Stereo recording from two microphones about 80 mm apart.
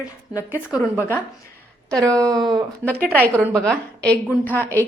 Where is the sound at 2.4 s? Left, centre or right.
Right.